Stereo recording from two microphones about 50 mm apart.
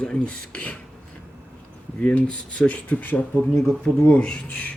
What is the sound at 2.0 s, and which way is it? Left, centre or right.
Speech, left.